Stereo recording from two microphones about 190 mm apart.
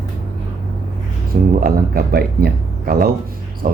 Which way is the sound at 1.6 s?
55° right (ahead or behind).